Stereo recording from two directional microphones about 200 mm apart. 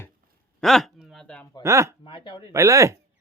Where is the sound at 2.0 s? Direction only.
25° left (ahead or behind).